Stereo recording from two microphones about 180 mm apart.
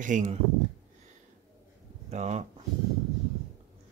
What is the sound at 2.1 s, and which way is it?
Speech, 40° right (ahead or behind).